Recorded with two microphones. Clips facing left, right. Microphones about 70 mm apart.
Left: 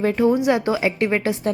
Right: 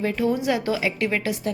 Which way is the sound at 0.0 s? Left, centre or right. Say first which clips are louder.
Left 5 dB; left.